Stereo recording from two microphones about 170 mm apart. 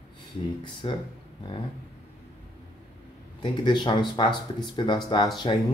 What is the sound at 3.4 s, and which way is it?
Speech, 25° left (ahead or behind).